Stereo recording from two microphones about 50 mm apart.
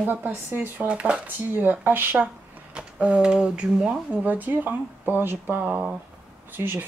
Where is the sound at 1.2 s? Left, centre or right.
Right.